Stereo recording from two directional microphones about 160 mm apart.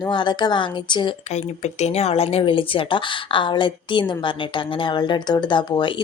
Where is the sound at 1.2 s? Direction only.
45° left (ahead or behind).